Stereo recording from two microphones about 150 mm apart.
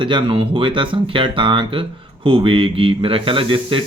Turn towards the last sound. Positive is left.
turn(degrees=-35)  # may be behind; listen again after turning